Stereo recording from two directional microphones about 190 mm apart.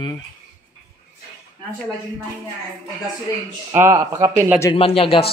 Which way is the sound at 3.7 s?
15° right (ahead or behind).